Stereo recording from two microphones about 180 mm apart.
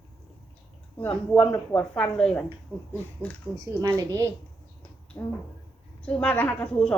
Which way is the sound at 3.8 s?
15° right (ahead or behind).